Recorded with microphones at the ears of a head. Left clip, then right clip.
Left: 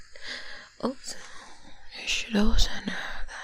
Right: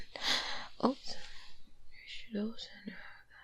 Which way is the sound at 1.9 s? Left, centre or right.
Left.